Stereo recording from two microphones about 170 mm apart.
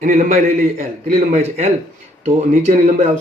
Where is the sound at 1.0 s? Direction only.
40° right (ahead or behind).